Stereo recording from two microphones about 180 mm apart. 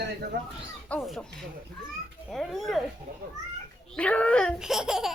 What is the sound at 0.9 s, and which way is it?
Speech, centre (ahead or behind).